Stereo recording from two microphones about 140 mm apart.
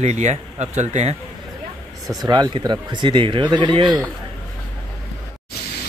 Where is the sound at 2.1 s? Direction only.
30° right (ahead or behind).